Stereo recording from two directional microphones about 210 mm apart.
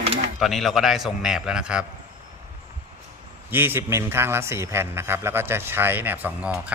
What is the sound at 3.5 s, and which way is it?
A man's voice, 10° right (ahead or behind).